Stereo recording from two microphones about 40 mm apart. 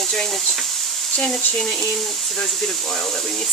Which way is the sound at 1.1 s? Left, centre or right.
Left.